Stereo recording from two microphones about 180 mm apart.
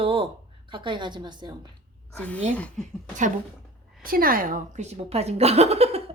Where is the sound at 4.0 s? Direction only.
55° right (ahead or behind); by 6.0 s 35° right (ahead or behind).